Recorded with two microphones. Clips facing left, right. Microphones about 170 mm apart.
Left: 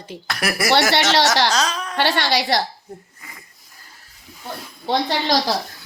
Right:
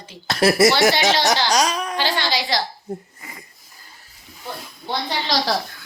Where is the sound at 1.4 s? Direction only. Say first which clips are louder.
Right 2 dB; 15° right (ahead or behind).